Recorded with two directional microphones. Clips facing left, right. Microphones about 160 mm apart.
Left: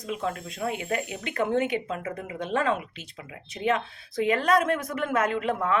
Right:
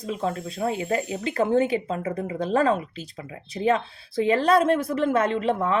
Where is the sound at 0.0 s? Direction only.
30° right (ahead or behind).